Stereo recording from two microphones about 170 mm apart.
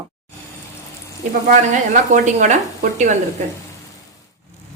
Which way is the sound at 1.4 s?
45° right (ahead or behind).